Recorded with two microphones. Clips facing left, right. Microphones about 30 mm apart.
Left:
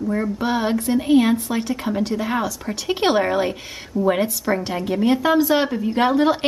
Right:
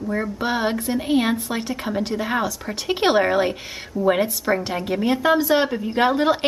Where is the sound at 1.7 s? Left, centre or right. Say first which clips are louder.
Left 1 dB; centre.